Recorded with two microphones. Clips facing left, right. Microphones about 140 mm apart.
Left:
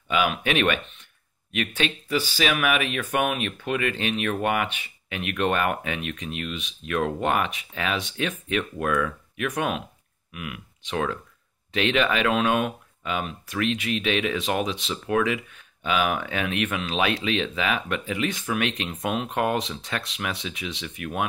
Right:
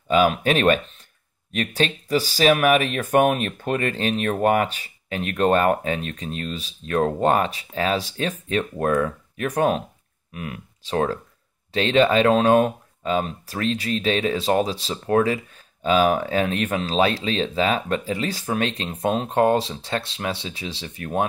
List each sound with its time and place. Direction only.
0.1 s speech: 35° right (ahead or behind)